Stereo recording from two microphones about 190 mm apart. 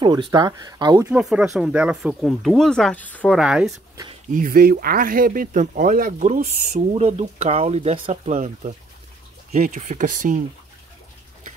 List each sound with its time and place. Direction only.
0.0 s speech: 25° right (ahead or behind)
1.0 s speech: 5° right (ahead or behind)
3.3 s speech: 5° right (ahead or behind)
3.9 s a sound: 25° right (ahead or behind)
4.3 s speech: 45° right (ahead or behind)